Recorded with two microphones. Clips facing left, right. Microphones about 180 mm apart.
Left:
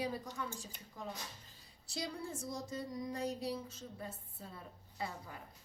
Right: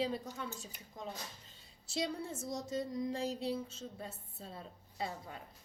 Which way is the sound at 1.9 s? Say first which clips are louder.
Right 4 dB; 25° right (ahead or behind).